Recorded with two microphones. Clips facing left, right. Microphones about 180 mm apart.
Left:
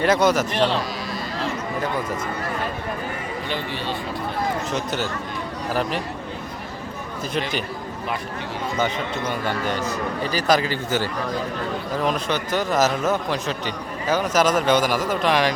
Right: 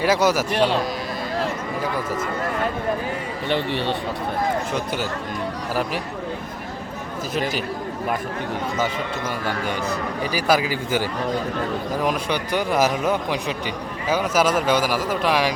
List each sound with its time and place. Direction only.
0.0 s a man's voice: 10° right (ahead or behind)
3.5 s speech: 65° right (ahead or behind)
10.3 s a man's voice: 10° right (ahead or behind)